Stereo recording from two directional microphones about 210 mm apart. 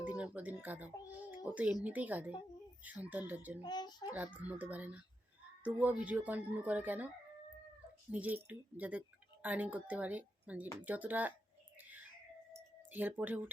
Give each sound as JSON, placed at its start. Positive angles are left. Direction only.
{"t": 0.0, "sound": "speech", "side_deg": -5}
{"t": 3.6, "sound": "a child's voice", "side_deg": 20}
{"t": 4.1, "sound": "speech", "side_deg": -5}
{"t": 8.1, "sound": "speech", "side_deg": -10}
{"t": 11.8, "sound": "a sound", "side_deg": -10}
{"t": 12.5, "sound": "music", "side_deg": -10}